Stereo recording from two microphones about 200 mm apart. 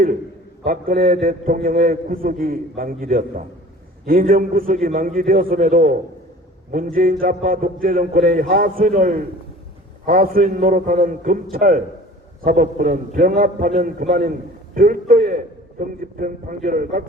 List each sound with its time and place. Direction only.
0.6 s a man's voice: 45° right (ahead or behind)